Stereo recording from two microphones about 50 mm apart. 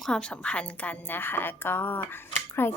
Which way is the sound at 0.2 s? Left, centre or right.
Left.